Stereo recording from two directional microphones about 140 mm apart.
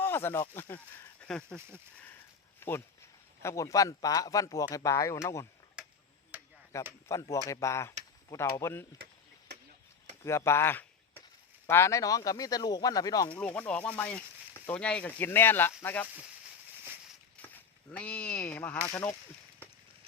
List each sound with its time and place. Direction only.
0.0 s speech: 15° left (ahead or behind)
5.8 s tick-tock: 5° right (ahead or behind)
6.7 s speech: 20° left (ahead or behind)
10.2 s speech: 20° left (ahead or behind)
13.3 s speech: 10° left (ahead or behind)
17.4 s a sound: 10° left (ahead or behind)
17.9 s speech: 10° left (ahead or behind)